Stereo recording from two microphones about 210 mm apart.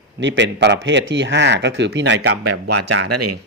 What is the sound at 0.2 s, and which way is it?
Speech, 60° right (ahead or behind).